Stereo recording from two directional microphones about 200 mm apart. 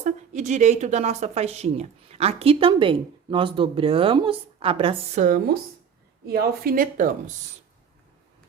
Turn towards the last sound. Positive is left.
turn(degrees=-40)  # may be behind; listen again after turning